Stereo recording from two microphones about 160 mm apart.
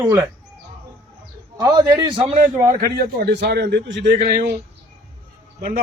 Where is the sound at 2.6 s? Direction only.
70° right (ahead or behind); by 3.8 s 90° right.